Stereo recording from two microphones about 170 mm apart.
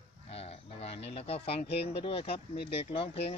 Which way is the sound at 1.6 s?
70° left (ahead or behind).